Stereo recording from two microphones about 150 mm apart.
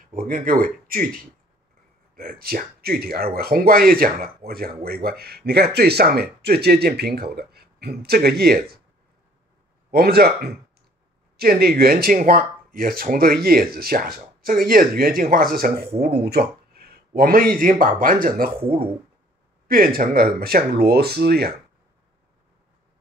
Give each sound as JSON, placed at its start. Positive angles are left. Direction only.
{"t": 0.1, "sound": "speech", "side_deg": -70}
{"t": 4.5, "sound": "speech", "side_deg": -90}
{"t": 9.8, "sound": "speech", "side_deg": -90}
{"t": 18.6, "sound": "speech", "side_deg": -40}
{"t": 19.7, "sound": "speech", "side_deg": -80}